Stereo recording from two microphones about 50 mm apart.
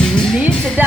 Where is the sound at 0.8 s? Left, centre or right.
Right.